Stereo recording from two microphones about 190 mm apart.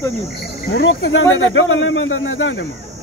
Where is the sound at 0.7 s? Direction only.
70° left (ahead or behind).